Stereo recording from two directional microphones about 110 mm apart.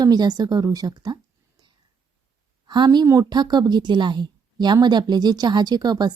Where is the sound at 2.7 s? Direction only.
40° right (ahead or behind).